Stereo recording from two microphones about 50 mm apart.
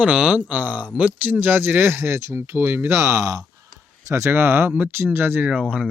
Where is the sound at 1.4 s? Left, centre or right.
Right.